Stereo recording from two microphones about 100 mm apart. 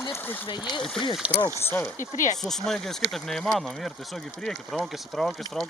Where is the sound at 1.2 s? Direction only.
10° right (ahead or behind).